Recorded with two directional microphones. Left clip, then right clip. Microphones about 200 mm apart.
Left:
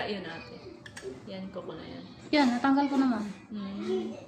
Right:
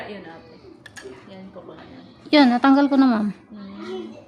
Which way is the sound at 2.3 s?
65° right (ahead or behind).